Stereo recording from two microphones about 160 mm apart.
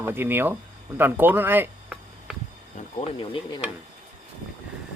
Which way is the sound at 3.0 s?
30° left (ahead or behind).